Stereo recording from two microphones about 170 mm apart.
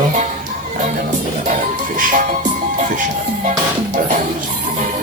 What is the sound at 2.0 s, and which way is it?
Music, 55° right (ahead or behind).